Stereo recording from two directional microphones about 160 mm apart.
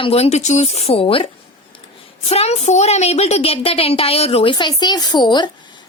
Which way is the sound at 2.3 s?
40° left (ahead or behind).